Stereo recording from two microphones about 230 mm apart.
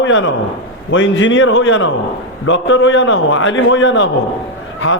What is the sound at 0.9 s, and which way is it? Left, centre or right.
A man's voice, left.